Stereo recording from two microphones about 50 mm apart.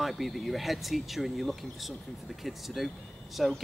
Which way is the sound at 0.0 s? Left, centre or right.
Centre.